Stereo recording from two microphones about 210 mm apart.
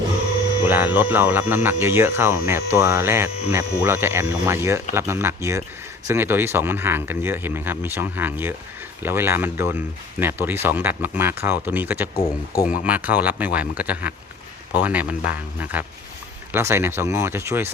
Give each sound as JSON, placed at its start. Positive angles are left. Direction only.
{"t": 0.7, "sound": "speech", "side_deg": -10}
{"t": 12.1, "sound": "speech", "side_deg": 15}
{"t": 12.6, "sound": "speech", "side_deg": -5}